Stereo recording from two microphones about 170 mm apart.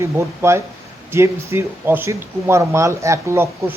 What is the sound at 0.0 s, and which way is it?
A man's voice, 15° right (ahead or behind).